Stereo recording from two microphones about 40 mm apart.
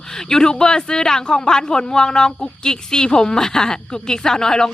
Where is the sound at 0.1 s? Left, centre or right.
Centre.